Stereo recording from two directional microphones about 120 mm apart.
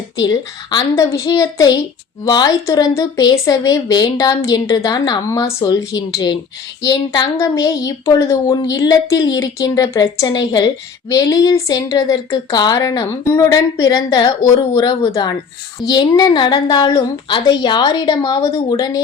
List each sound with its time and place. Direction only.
0.2 s a child's voice: 35° left (ahead or behind)
7.3 s a woman's voice: 25° left (ahead or behind)